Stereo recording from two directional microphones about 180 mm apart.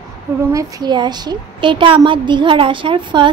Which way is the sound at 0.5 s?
20° right (ahead or behind).